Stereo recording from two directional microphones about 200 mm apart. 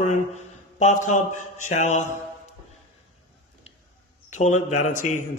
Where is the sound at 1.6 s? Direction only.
35° left (ahead or behind).